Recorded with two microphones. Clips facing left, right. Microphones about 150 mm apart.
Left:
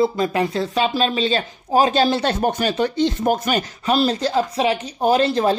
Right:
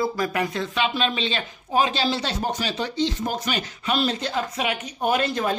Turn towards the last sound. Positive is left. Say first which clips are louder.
# left 6 dB
turn(degrees=30)  # may be behind; listen again after turning